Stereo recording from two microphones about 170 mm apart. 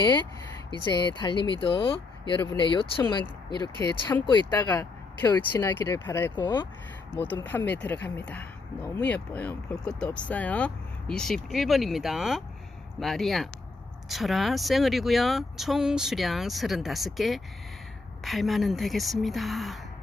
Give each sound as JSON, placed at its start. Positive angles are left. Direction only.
{"t": 0.9, "sound": "speech", "side_deg": 25}
{"t": 3.6, "sound": "speech", "side_deg": 15}
{"t": 4.7, "sound": "speech", "side_deg": 10}
{"t": 6.3, "sound": "speech", "side_deg": 25}
{"t": 7.4, "sound": "speech", "side_deg": 10}